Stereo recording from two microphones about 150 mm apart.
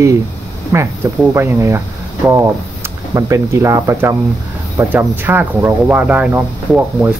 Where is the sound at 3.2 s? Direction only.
20° right (ahead or behind).